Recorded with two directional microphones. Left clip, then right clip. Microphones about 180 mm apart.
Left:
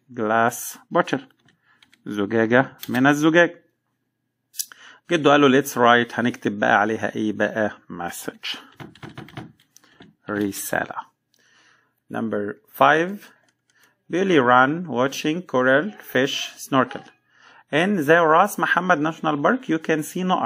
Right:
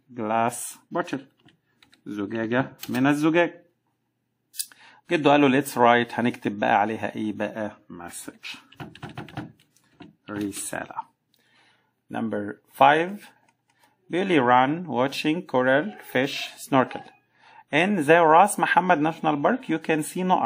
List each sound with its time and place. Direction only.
0.1 s speech: 10° left (ahead or behind)
2.9 s speech: 10° left (ahead or behind)
4.6 s speech: centre (ahead or behind); by 8.6 s 25° left (ahead or behind)
9.8 s computer keyboard: 25° left (ahead or behind)
12.3 s speech: centre (ahead or behind)
14.5 s speech: 10° left (ahead or behind)
18.0 s speech: 5° right (ahead or behind)